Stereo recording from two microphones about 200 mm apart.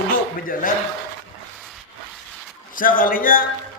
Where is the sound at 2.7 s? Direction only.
45° left (ahead or behind).